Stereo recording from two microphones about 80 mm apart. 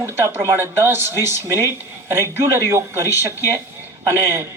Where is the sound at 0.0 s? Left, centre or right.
Right.